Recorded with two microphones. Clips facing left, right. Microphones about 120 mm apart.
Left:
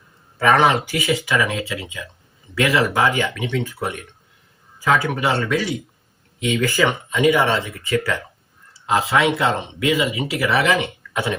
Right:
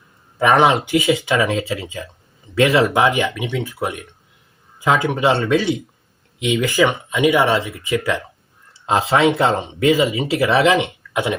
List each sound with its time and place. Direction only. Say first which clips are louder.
0.3 s speech: right 2 dB; 15° right (ahead or behind)
4.8 s speech: right 2 dB; 20° right (ahead or behind)